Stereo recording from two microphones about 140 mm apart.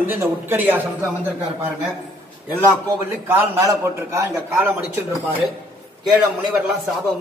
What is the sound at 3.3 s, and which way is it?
A man's voice, 20° right (ahead or behind).